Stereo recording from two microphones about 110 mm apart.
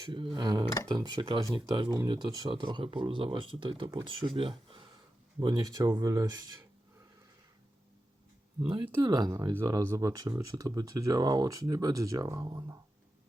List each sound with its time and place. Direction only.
0.0 s speech: 50° right (ahead or behind)
5.4 s speech: 35° right (ahead or behind)
8.6 s speech: 40° right (ahead or behind)